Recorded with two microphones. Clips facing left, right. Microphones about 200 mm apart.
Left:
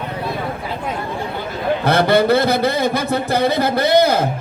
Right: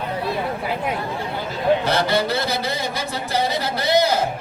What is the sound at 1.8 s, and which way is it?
Speech, 55° left (ahead or behind).